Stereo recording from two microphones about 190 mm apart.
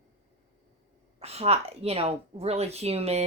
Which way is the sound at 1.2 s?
35° right (ahead or behind).